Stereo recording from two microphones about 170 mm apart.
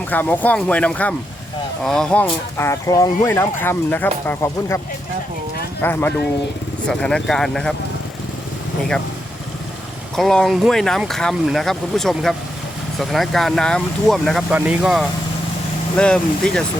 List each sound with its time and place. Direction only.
0.1 s speech: 10° left (ahead or behind)
5.8 s speech: 10° left (ahead or behind)
10.2 s speech: centre (ahead or behind)
16.0 s speech: 5° left (ahead or behind)